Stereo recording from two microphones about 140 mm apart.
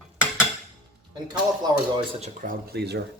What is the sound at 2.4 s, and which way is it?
Speech, 90° right.